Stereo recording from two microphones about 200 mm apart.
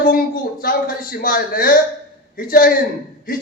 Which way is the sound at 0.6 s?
45° left (ahead or behind).